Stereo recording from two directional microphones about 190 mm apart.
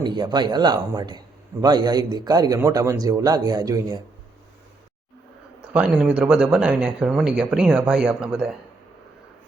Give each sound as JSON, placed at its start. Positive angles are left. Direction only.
{"t": 0.0, "sound": "a man's voice", "side_deg": -25}
{"t": 5.7, "sound": "speech", "side_deg": -5}